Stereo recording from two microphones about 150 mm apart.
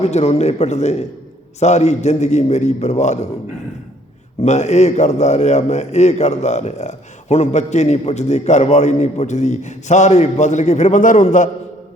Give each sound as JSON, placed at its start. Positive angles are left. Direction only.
{"t": 0.0, "sound": "a man's voice", "side_deg": 45}
{"t": 4.4, "sound": "a man's voice", "side_deg": 50}